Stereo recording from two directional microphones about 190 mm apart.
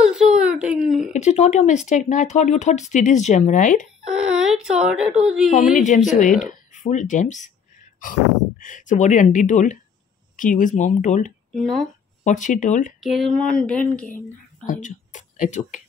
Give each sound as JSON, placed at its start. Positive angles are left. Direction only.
{"t": 0.1, "sound": "baby cry", "side_deg": -5}
{"t": 1.1, "sound": "speech", "side_deg": 35}
{"t": 4.1, "sound": "speech", "side_deg": -5}
{"t": 6.1, "sound": "speech", "side_deg": 40}
{"t": 8.5, "sound": "speech", "side_deg": 45}
{"t": 11.5, "sound": "speech", "side_deg": 0}
{"t": 12.2, "sound": "speech", "side_deg": 40}
{"t": 13.0, "sound": "speech", "side_deg": 0}
{"t": 14.7, "sound": "speech", "side_deg": 40}